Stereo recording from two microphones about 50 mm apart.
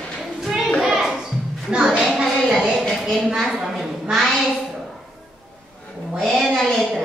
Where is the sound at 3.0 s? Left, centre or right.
Centre.